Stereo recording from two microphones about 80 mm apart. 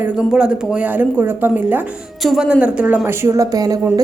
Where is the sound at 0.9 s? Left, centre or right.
Right.